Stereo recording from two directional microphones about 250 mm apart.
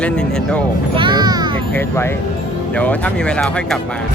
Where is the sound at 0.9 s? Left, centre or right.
Centre.